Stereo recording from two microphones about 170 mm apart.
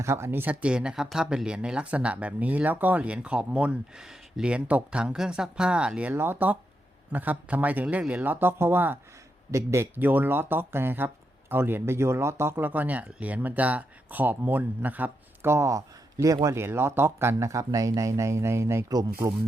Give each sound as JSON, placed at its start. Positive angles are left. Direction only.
{"t": 0.0, "sound": "speech", "side_deg": -15}